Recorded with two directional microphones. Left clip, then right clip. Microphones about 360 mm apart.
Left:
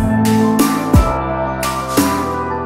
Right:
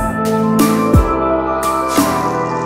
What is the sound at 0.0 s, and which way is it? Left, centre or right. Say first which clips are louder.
Music: even; centre.